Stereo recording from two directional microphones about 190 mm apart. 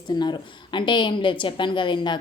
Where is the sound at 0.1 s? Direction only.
25° left (ahead or behind).